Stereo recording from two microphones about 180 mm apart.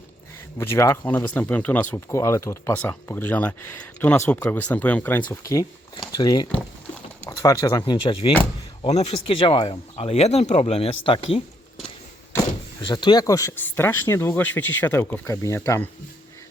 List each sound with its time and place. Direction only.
0.6 s speech: 15° left (ahead or behind)
6.5 s a sound: 5° left (ahead or behind)
7.3 s speech: 20° left (ahead or behind)
8.8 s speech: 35° left (ahead or behind)
12.8 s speech: 25° left (ahead or behind)